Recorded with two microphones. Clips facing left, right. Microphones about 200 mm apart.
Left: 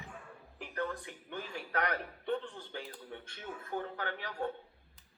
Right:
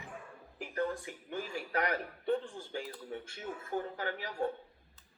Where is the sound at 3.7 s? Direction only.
20° left (ahead or behind).